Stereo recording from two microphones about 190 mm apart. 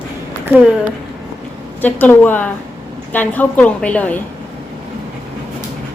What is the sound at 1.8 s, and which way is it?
A woman's voice, 10° left (ahead or behind).